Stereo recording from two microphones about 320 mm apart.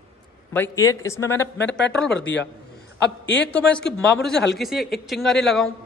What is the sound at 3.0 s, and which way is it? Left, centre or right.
Speech, left.